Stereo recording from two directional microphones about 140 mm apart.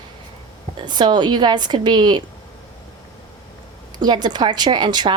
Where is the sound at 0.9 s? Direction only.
30° right (ahead or behind).